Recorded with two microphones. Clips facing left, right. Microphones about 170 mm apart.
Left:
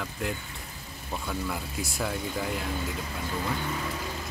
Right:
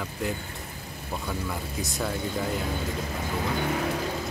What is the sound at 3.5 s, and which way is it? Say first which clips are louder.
Vehicle: right 5 dB; 70° right (ahead or behind).